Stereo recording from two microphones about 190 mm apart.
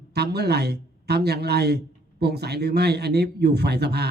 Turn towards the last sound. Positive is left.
turn(degrees=-60)  # may be behind; listen again after turning